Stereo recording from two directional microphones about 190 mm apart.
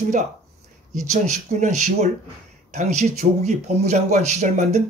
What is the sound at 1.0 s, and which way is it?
Speech, 40° right (ahead or behind).